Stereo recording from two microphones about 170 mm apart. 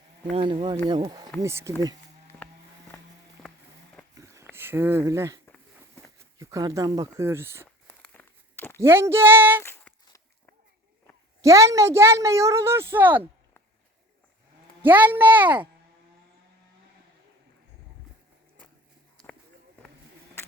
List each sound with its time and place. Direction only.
0.3 s a woman's voice: 30° right (ahead or behind)
4.1 s a sound: 20° right (ahead or behind)
4.4 s speech: 15° right (ahead or behind)
6.4 s speech: 20° right (ahead or behind)
7.9 s a sound: 10° left (ahead or behind)
8.8 s a woman's voice: 15° right (ahead or behind)
9.6 s a sound: 15° left (ahead or behind)
11.4 s a woman's voice: 20° right (ahead or behind)
14.8 s a woman's voice: 10° right (ahead or behind)